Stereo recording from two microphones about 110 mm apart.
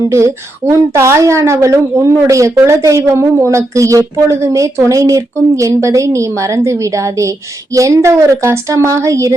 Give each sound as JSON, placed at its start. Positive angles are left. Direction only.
{"t": 0.1, "sound": "a woman's voice", "side_deg": -25}